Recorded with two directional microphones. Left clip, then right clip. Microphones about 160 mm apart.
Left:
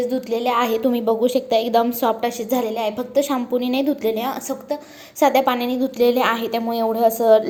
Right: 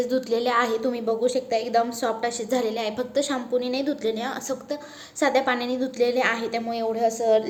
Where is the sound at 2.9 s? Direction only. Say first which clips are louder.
Left 5 dB; 35° right (ahead or behind).